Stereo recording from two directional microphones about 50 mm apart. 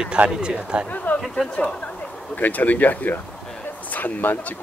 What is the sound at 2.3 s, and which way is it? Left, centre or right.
Speech, left.